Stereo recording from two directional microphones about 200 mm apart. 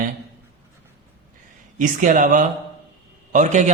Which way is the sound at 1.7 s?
40° right (ahead or behind).